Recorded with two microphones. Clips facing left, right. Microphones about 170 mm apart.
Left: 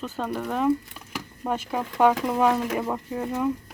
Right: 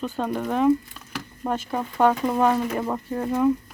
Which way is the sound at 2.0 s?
10° left (ahead or behind).